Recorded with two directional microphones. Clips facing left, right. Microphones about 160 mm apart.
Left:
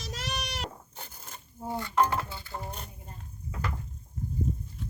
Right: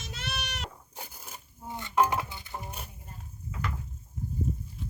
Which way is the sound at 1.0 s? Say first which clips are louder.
Right 1 dB; 10° right (ahead or behind).